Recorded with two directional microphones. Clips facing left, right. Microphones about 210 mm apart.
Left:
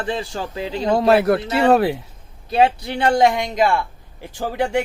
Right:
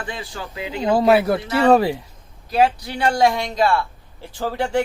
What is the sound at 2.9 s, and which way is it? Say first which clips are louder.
Speech: left 3 dB; 25° left (ahead or behind).